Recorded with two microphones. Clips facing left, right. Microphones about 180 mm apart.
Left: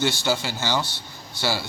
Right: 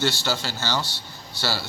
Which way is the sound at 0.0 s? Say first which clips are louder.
Left 2 dB; 15° left (ahead or behind).